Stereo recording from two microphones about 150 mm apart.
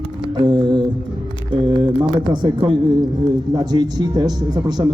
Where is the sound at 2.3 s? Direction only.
30° right (ahead or behind).